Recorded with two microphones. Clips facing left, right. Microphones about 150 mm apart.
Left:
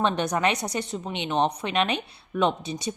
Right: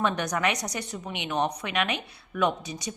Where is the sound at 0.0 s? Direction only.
25° left (ahead or behind).